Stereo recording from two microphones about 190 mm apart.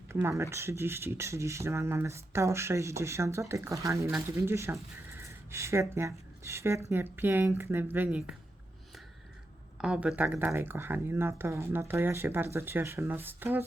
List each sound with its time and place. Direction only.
0.1 s speech: 15° right (ahead or behind)
9.7 s speech: 5° right (ahead or behind)